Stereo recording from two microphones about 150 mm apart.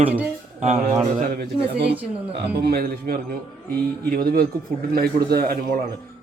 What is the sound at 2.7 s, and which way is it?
A man's voice, 75° right (ahead or behind).